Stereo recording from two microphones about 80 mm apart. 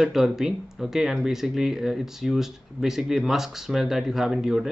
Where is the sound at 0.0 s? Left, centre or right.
Centre.